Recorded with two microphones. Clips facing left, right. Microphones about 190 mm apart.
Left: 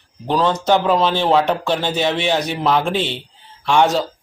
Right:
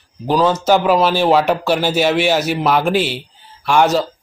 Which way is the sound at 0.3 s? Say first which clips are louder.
Right 2 dB; centre (ahead or behind).